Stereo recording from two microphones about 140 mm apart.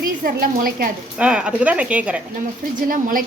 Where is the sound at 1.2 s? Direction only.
5° right (ahead or behind).